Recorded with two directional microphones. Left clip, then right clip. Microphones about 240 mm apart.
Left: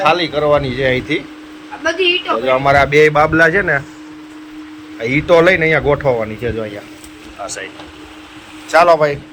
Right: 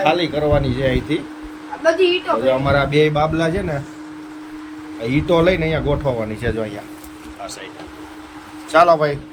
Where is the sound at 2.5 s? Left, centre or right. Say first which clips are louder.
Left 7 dB; centre.